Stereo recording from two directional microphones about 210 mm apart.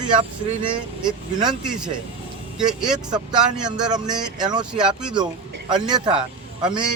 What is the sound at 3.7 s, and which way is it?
Speech, 20° right (ahead or behind).